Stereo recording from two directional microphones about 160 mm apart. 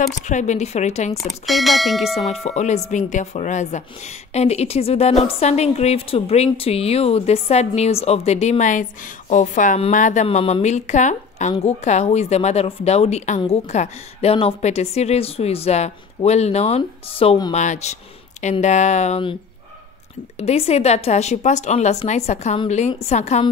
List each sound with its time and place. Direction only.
0.0 s a woman's voice: 50° left (ahead or behind)
1.1 s speech: centre (ahead or behind)
2.4 s a woman's voice: 45° left (ahead or behind)
20.3 s a woman's voice: 40° left (ahead or behind)